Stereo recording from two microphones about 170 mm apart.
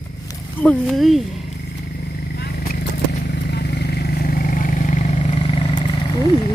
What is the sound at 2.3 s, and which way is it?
Vehicle, 65° left (ahead or behind).